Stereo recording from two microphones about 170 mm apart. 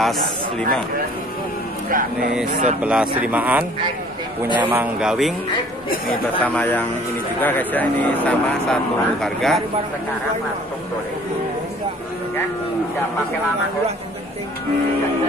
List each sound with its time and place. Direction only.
0.0 s speech: centre (ahead or behind)
2.4 s speech: 55° right (ahead or behind)
2.8 s speech: 5° right (ahead or behind)
6.4 s speech: 10° left (ahead or behind)